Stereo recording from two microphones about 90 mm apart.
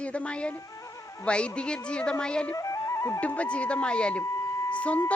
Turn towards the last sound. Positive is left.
turn(degrees=15)  # may be behind; listen again after turning